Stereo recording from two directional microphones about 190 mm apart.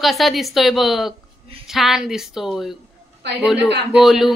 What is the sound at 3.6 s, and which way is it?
Speech, 60° right (ahead or behind).